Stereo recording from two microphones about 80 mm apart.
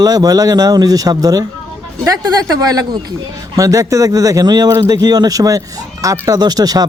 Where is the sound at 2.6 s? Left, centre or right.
Right.